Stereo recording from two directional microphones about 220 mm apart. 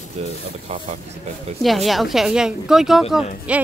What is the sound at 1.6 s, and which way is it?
A woman's voice, centre (ahead or behind).